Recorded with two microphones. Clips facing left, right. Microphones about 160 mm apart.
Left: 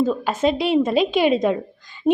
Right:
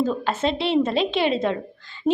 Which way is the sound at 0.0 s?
10° left (ahead or behind).